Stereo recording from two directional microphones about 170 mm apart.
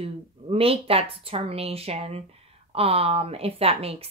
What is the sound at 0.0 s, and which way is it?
A woman's voice, 35° right (ahead or behind).